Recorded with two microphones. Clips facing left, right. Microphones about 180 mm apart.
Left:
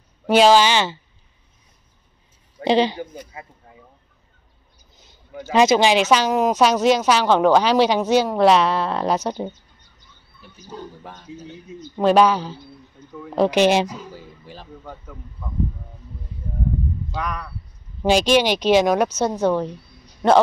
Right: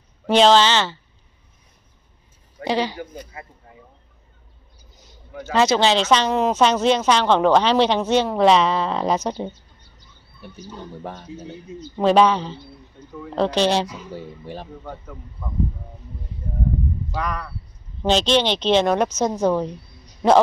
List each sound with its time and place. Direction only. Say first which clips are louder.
0.3 s speech: left 1 dB; 10° left (ahead or behind)
2.6 s a man's voice: left 5 dB; 20° left (ahead or behind)
5.4 s a woman's voice: left 2 dB; 15° left (ahead or behind)
11.0 s speech: right 7 dB; 55° right (ahead or behind)
12.0 s a woman's voice: even; 5° left (ahead or behind)
14.4 s speech: right 7 dB; 60° right (ahead or behind)
17.1 s a woman's voice: right 2 dB; centre (ahead or behind)
18.0 s speech: left 2 dB; 10° left (ahead or behind)